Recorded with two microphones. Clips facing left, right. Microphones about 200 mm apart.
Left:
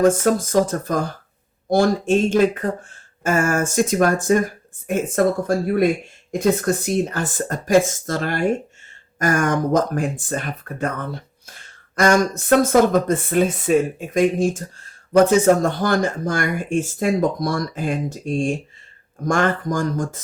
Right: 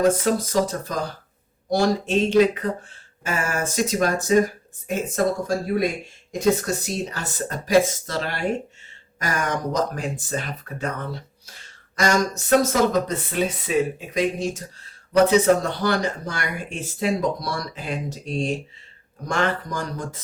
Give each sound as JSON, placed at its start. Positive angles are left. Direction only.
{"t": 0.0, "sound": "speech", "side_deg": 45}
{"t": 6.6, "sound": "speech", "side_deg": 55}